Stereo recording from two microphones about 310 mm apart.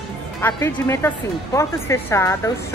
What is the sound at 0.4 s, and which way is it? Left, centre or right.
Speech, centre.